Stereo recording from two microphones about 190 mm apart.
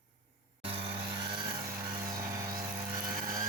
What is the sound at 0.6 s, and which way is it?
Music, 30° right (ahead or behind).